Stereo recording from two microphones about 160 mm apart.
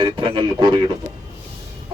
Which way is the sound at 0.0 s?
30° right (ahead or behind).